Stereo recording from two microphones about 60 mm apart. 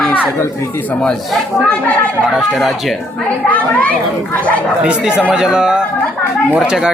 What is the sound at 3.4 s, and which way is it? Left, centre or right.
Speech, left.